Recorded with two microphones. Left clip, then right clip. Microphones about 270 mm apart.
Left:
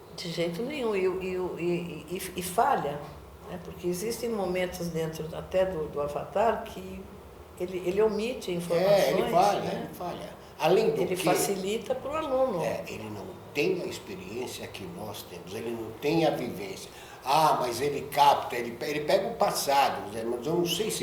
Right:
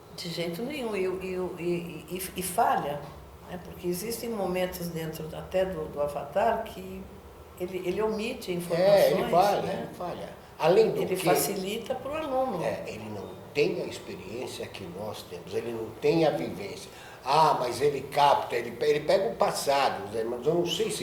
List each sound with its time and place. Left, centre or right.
0.2 s speech: left
3.8 s a woman's voice: left
7.6 s a woman's voice: left
8.7 s a man's voice: right
11.3 s a woman's voice: left
12.6 s a man's voice: right